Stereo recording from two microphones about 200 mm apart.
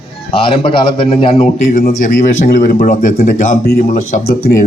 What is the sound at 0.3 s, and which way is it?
A man's voice, 30° left (ahead or behind).